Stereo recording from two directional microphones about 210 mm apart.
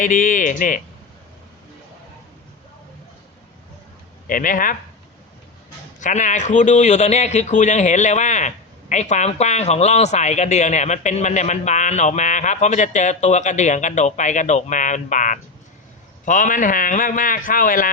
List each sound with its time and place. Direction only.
0.0 s a man's voice: 40° left (ahead or behind)
4.3 s a man's voice: 40° left (ahead or behind)
6.0 s a man's voice: 35° left (ahead or behind)